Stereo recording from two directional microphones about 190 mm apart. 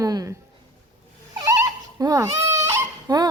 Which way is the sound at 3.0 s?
20° right (ahead or behind).